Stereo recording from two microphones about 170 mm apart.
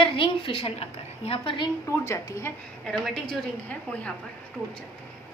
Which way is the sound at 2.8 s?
Centre (ahead or behind).